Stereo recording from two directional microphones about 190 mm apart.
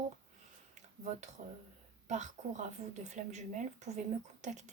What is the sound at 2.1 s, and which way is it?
Speech, 40° right (ahead or behind).